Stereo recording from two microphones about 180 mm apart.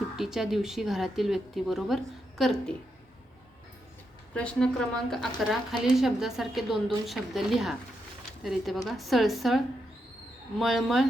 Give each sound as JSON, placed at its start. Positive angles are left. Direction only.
{"t": 0.2, "sound": "a woman's voice", "side_deg": 0}
{"t": 4.4, "sound": "a woman's voice", "side_deg": 5}